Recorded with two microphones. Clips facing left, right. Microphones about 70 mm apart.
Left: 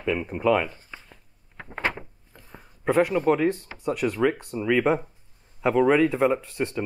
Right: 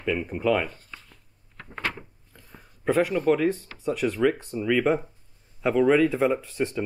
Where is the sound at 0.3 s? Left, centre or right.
Centre.